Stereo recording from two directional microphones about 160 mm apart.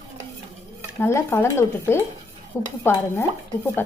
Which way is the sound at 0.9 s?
15° left (ahead or behind).